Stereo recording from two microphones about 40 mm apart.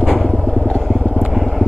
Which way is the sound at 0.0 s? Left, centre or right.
Centre.